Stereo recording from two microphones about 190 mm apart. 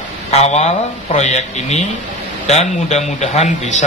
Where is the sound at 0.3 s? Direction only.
35° left (ahead or behind).